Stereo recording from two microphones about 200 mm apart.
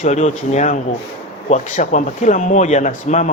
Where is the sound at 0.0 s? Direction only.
35° left (ahead or behind).